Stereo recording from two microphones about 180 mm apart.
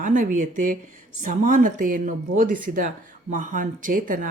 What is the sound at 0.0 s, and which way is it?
Speech, 45° right (ahead or behind).